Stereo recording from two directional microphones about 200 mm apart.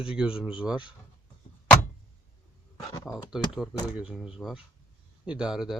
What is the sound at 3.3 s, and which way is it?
Speech, 5° right (ahead or behind).